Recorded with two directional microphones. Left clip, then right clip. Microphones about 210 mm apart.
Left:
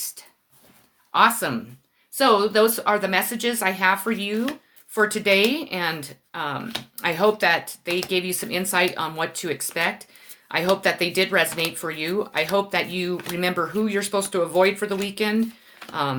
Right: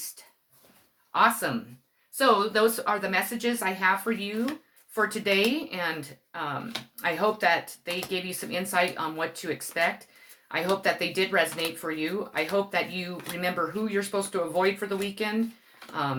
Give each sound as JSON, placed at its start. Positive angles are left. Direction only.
{"t": 1.1, "sound": "speech", "side_deg": 45}